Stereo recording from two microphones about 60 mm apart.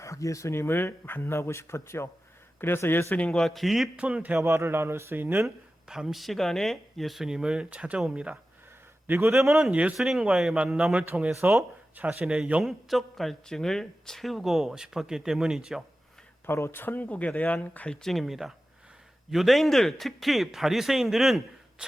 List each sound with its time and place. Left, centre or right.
0.0 s speech: left
0.5 s speech: left
3.2 s speech: left
3.4 s speech: centre
3.9 s speech: right
4.4 s speech: right
5.9 s speech: centre
9.0 s a man's voice: right
9.5 s speech: centre
11.1 s speech: centre
12.6 s speech: centre
16.5 s speech: left
17.1 s speech: left
18.0 s speech: centre